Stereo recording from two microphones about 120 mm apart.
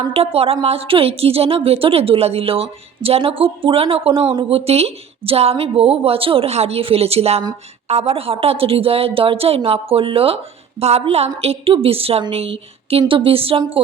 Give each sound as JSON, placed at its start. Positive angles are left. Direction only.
{"t": 0.1, "sound": "a woman's voice", "side_deg": -55}